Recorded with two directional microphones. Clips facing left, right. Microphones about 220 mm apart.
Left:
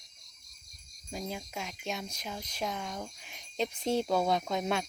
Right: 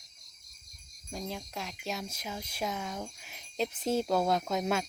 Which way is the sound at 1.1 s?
5° left (ahead or behind).